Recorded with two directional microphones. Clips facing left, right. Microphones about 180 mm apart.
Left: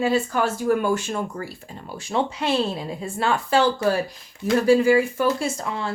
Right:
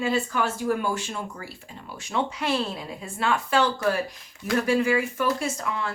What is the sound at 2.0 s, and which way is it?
A woman's voice, 30° left (ahead or behind).